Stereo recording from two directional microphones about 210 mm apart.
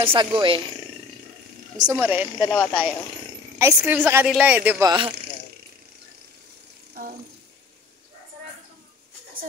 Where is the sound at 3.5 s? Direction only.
10° right (ahead or behind).